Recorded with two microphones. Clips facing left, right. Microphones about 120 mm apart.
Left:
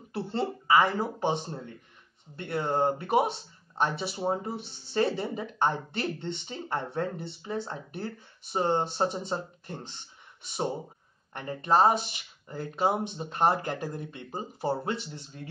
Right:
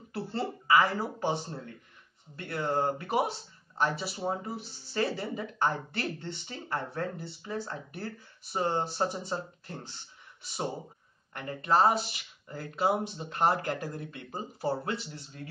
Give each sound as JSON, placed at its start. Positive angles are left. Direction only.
{"t": 0.1, "sound": "speech", "side_deg": 25}